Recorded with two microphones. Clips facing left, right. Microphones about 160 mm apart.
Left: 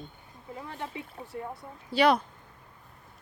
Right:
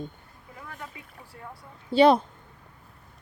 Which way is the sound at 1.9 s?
25° right (ahead or behind).